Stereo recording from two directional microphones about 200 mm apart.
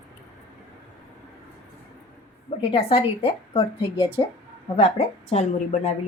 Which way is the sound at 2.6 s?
25° left (ahead or behind).